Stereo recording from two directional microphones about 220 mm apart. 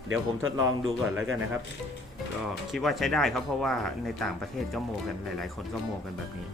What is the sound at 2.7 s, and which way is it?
Speech, centre (ahead or behind).